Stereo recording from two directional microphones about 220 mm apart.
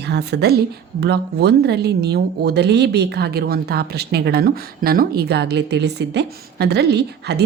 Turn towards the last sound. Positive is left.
turn(degrees=-50)  # may be behind; listen again after turning